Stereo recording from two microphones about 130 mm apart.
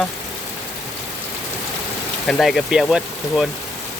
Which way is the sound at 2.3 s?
Centre (ahead or behind).